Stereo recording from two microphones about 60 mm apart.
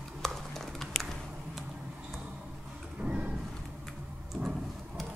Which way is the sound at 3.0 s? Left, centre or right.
Right.